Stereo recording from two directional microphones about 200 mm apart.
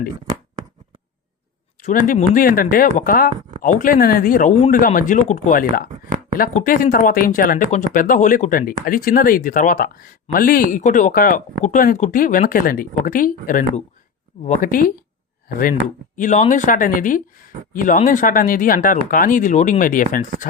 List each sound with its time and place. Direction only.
1.8 s speech: 40° left (ahead or behind)
16.1 s speech: 40° left (ahead or behind)